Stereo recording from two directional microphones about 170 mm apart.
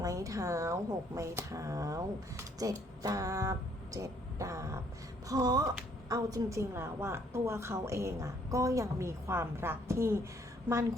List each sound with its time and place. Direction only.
0.0 s a woman's voice: 20° right (ahead or behind)